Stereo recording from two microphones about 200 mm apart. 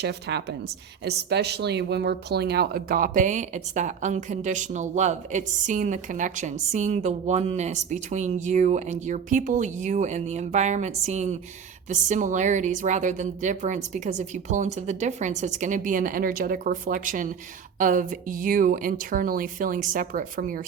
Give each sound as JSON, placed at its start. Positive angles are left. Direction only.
{"t": 0.0, "sound": "a woman's voice", "side_deg": -55}